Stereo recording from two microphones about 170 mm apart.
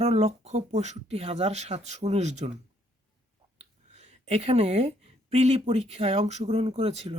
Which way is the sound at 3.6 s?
40° right (ahead or behind).